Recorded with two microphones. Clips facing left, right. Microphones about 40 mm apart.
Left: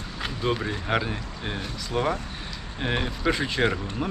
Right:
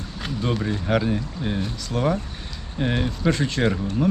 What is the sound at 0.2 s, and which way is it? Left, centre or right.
Speech, centre.